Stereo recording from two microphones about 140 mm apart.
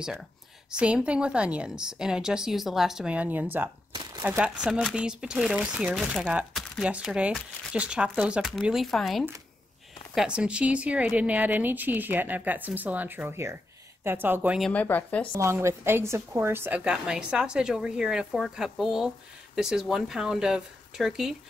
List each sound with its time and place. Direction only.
0.7 s a woman's voice: 5° right (ahead or behind)
3.9 s crumpling: 30° right (ahead or behind)
4.2 s a woman's voice: 10° right (ahead or behind)
14.6 s speech: 10° left (ahead or behind)
15.3 s a woman's voice: 20° right (ahead or behind); by 21.4 s centre (ahead or behind)